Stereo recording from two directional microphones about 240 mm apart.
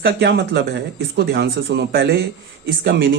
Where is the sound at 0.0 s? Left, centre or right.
Right.